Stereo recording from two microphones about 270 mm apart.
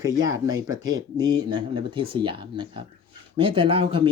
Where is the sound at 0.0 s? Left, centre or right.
Centre.